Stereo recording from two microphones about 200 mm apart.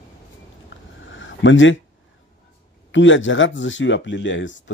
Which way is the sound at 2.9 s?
70° left (ahead or behind).